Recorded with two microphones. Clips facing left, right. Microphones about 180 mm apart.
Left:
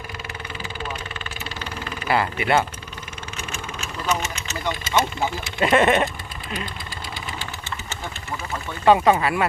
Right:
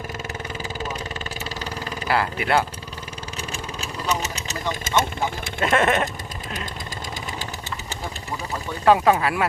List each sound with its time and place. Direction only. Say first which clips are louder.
2.0 s speech: left 1 dB; centre (ahead or behind)
3.5 s vehicle: even; 35° right (ahead or behind)
5.5 s speech: left 3 dB; centre (ahead or behind)
8.8 s speech: left 1 dB; centre (ahead or behind)